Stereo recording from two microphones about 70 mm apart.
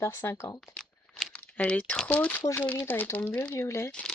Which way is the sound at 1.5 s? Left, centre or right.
Centre.